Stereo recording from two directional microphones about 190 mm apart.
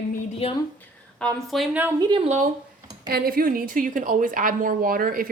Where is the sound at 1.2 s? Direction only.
Centre (ahead or behind).